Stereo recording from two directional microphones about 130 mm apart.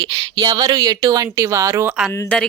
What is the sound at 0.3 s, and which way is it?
Speech, 30° right (ahead or behind).